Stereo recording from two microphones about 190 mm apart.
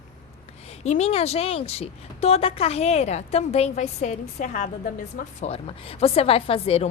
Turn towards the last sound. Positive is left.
turn(degrees=30)  # may be behind; listen again after turning